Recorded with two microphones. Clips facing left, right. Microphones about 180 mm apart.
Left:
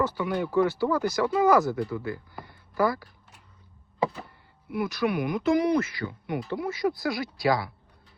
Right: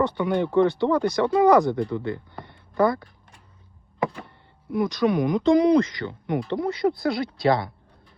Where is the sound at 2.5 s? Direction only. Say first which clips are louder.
Right 4 dB; 25° right (ahead or behind).